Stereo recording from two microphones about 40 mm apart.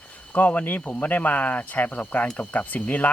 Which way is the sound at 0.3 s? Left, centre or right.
Left.